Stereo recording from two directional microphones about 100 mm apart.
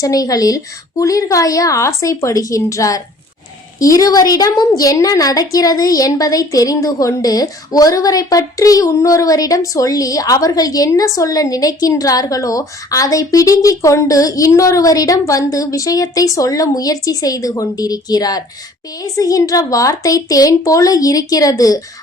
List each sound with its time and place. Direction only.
0.0 s a woman's voice: 35° left (ahead or behind)